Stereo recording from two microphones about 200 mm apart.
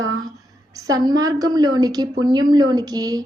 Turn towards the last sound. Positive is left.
turn(degrees=-20)  # may be behind; listen again after turning